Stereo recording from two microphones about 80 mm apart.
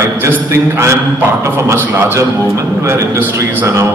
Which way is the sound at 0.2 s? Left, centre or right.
Right.